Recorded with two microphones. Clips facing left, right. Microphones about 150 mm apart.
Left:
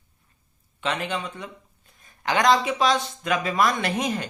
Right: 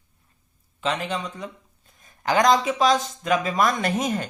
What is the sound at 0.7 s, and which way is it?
Speech, 35° right (ahead or behind).